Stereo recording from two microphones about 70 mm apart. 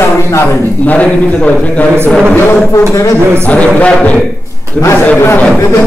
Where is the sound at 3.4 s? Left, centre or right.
Centre.